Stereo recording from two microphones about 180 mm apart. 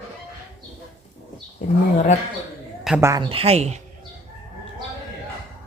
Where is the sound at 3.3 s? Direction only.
35° right (ahead or behind).